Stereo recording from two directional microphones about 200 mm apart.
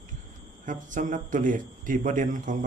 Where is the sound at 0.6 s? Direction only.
40° right (ahead or behind).